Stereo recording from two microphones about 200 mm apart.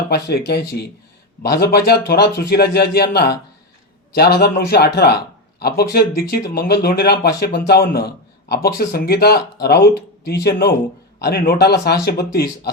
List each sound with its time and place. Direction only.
0.1 s speech: 55° left (ahead or behind)